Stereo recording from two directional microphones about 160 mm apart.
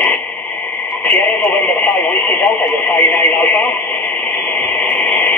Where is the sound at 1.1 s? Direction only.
15° left (ahead or behind).